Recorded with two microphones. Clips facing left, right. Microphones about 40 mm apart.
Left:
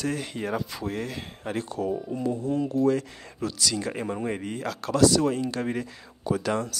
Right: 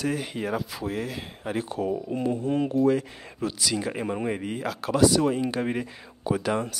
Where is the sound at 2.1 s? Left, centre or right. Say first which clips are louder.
Right 1 dB; right.